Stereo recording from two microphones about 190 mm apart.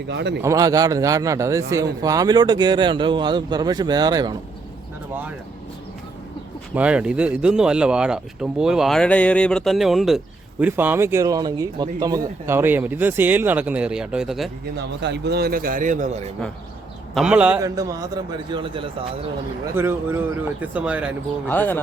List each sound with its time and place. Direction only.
0.1 s speech: 65° right (ahead or behind)
0.4 s speech: 15° right (ahead or behind)
6.7 s speech: 5° right (ahead or behind)
14.8 s a man's voice: 65° right (ahead or behind); by 16.1 s 40° right (ahead or behind)
17.2 s speech: 5° right (ahead or behind)
17.6 s speech: 15° right (ahead or behind)
19.7 s speech: 10° right (ahead or behind)
21.4 s speech: 10° left (ahead or behind)